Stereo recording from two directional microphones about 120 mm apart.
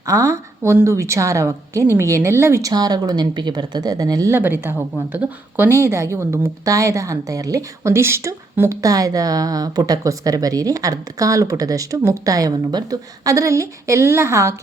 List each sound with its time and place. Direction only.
0.0 s a woman's voice: 25° right (ahead or behind)
4.4 s a woman's voice: 15° right (ahead or behind)